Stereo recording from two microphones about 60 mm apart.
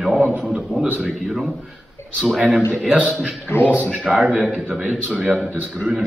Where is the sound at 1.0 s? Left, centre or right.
Centre.